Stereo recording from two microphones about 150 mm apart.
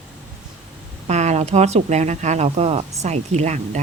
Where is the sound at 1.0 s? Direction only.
50° right (ahead or behind).